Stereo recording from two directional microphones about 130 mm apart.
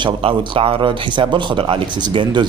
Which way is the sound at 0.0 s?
40° right (ahead or behind).